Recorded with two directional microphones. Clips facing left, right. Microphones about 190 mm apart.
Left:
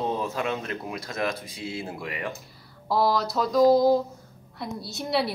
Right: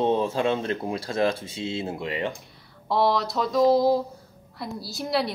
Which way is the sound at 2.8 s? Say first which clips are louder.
Right 1 dB; centre (ahead or behind).